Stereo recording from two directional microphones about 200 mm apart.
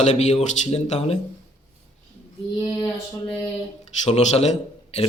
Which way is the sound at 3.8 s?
35° left (ahead or behind).